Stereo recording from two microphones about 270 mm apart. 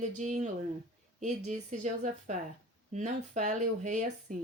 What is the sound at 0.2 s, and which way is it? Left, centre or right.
A woman's voice, right.